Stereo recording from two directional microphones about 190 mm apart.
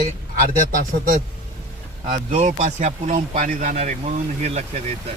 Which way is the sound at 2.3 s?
35° right (ahead or behind).